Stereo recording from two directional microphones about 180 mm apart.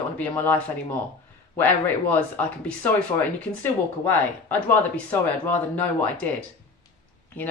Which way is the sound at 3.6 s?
10° left (ahead or behind).